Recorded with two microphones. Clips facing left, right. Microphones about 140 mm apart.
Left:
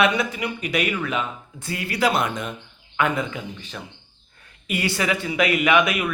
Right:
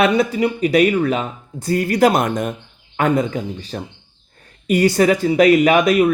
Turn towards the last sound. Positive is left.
turn(degrees=-35)  # may be behind; listen again after turning